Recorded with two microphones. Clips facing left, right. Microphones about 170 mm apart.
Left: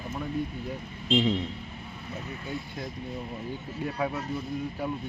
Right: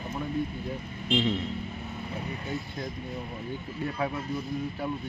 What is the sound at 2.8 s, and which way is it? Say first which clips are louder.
Speech: right 1 dB; 5° left (ahead or behind).